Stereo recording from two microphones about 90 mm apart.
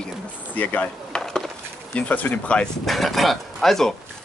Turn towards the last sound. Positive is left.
turn(degrees=5)  # may be behind; listen again after turning